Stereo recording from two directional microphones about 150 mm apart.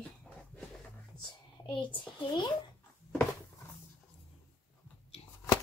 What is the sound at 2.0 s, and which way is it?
Speech, 30° left (ahead or behind).